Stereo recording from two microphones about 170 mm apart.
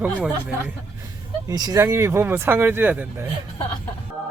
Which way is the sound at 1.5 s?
20° right (ahead or behind).